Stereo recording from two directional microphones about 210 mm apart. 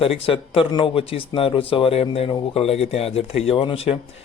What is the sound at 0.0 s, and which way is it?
Speech, 25° left (ahead or behind).